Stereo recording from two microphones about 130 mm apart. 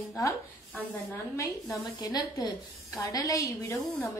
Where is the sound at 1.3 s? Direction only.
25° left (ahead or behind).